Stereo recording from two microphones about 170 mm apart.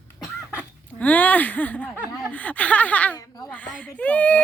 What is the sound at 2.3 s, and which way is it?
Speech, 10° left (ahead or behind).